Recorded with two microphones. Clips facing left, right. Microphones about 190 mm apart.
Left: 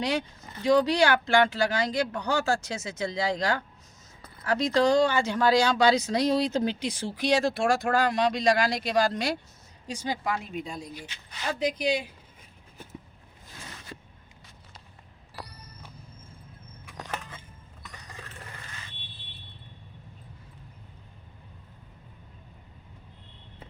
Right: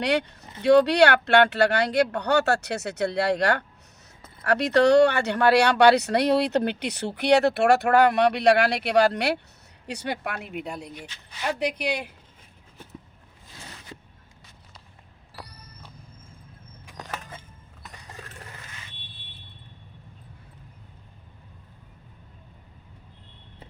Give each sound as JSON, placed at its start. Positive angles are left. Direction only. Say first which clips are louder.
{"t": 0.0, "sound": "speech", "louder": "right 4 dB", "side_deg": -70}
{"t": 10.9, "sound": "speech", "louder": "right 1 dB", "side_deg": 5}
{"t": 11.4, "sound": "speech", "louder": "even", "side_deg": -65}